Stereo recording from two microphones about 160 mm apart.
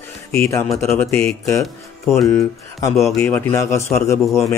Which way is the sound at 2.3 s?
20° left (ahead or behind).